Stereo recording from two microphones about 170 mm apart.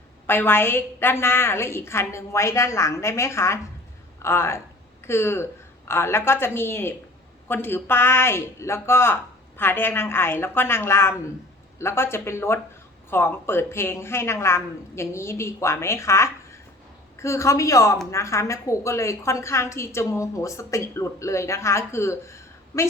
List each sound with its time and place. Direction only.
0.3 s a woman's voice: 10° left (ahead or behind)